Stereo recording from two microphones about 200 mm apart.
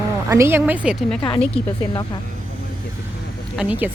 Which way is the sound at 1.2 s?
25° left (ahead or behind).